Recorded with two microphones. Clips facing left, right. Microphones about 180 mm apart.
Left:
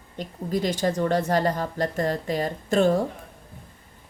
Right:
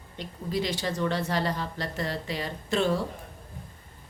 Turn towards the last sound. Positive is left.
turn(degrees=45)  # may be behind; listen again after turning